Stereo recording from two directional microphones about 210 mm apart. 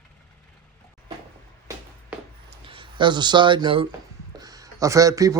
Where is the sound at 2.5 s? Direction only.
25° right (ahead or behind).